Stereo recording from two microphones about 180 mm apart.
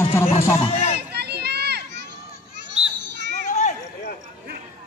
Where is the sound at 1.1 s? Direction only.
65° right (ahead or behind).